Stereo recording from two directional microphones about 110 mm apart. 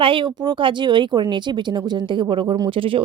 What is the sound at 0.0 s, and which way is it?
Speech, 50° right (ahead or behind).